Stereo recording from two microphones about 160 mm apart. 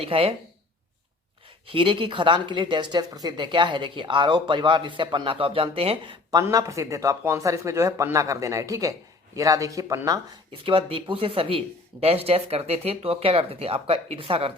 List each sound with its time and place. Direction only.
0.0 s speech: 35° right (ahead or behind)
1.6 s a woman's voice: 35° right (ahead or behind)
6.3 s a woman's voice: 20° right (ahead or behind)
10.6 s speech: 35° right (ahead or behind)